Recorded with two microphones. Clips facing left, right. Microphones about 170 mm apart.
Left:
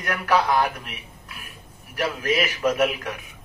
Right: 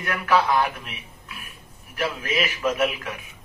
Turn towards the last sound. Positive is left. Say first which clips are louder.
# left 2 dB
turn(degrees=40)  # may be behind; listen again after turning